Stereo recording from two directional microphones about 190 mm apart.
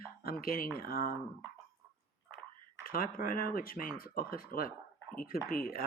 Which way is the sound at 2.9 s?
50° left (ahead or behind).